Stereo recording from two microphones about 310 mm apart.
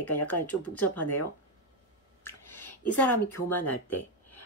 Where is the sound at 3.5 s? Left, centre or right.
Centre.